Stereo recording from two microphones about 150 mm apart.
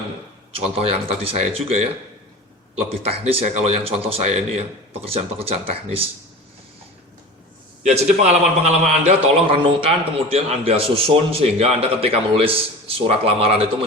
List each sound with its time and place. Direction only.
0.5 s a man's voice: 40° right (ahead or behind)
3.0 s a man's voice: 40° right (ahead or behind)
7.9 s a man's voice: 50° right (ahead or behind)